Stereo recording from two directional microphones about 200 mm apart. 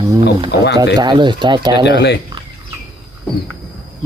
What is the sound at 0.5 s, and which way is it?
Speech, 60° left (ahead or behind).